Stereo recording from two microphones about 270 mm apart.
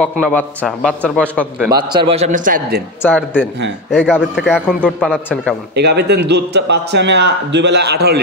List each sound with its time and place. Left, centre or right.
0.0 s a man's voice: centre
1.6 s a man's voice: centre; by 2.8 s right
3.0 s a man's voice: centre
5.8 s a man's voice: right